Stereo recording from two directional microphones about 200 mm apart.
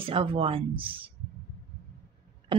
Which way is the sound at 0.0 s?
25° right (ahead or behind).